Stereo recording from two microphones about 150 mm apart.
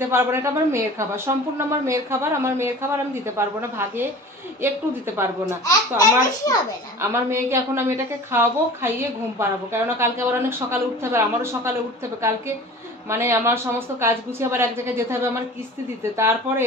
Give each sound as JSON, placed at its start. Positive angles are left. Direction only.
{"t": 0.1, "sound": "a woman's voice", "side_deg": -15}
{"t": 5.7, "sound": "a child's voice", "side_deg": 20}
{"t": 7.0, "sound": "a woman's voice", "side_deg": -15}
{"t": 13.1, "sound": "a woman's voice", "side_deg": -20}